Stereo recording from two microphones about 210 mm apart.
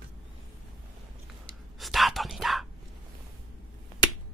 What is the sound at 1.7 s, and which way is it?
Whispering, centre (ahead or behind).